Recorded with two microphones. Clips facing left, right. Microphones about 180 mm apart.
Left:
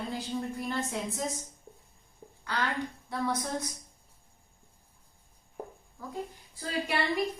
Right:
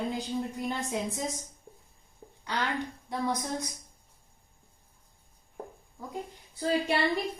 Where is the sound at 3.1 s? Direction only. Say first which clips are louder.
Right 1 dB; 15° right (ahead or behind).